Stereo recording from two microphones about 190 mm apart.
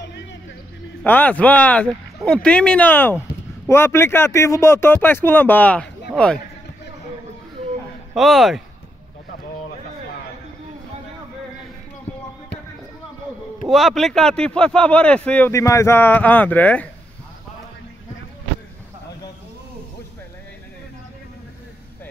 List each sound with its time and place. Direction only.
0.0 s music: 65° left (ahead or behind)
1.0 s speech: 10° left (ahead or behind)
8.1 s speech: centre (ahead or behind)
13.7 s speech: centre (ahead or behind)